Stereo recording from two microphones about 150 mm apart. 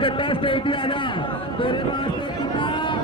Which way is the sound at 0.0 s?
35° left (ahead or behind).